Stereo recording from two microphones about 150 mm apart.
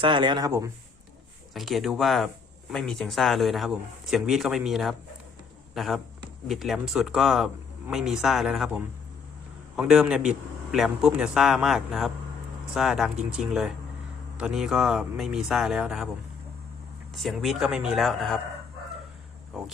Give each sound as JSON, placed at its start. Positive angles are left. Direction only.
{"t": 0.0, "sound": "speech", "side_deg": -30}
{"t": 1.5, "sound": "speech", "side_deg": 0}
{"t": 17.2, "sound": "speech", "side_deg": 0}